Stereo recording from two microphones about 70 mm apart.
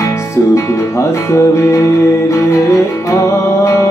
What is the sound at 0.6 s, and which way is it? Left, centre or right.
Music, left.